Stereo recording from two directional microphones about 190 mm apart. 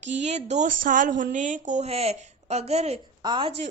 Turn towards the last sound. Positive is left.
turn(degrees=-25)  # may be behind; listen again after turning